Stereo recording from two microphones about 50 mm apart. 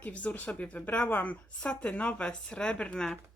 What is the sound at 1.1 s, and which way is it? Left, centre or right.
Speech, left.